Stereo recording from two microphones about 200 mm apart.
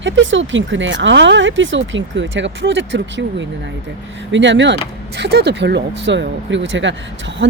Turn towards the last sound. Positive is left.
turn(degrees=-65)  # may be behind; listen again after turning